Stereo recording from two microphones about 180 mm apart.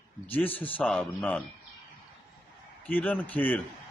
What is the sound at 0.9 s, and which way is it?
Speech, centre (ahead or behind).